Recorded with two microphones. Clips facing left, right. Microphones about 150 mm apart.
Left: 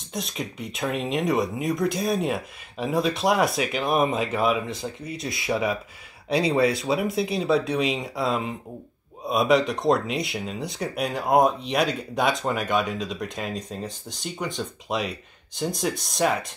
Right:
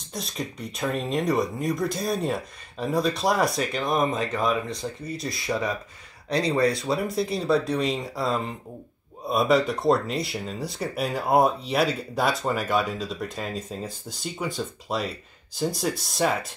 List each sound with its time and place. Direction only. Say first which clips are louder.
0.1 s speech: left 1 dB; centre (ahead or behind)